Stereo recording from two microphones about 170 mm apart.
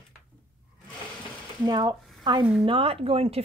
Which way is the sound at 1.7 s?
25° right (ahead or behind).